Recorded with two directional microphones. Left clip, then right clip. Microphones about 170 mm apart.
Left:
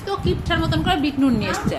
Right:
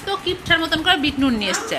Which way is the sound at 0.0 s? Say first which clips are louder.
Right 1 dB; 10° left (ahead or behind).